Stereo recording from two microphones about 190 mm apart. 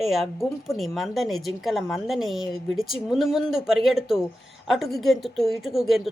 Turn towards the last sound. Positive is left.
turn(degrees=0)  # may be behind; listen again after turning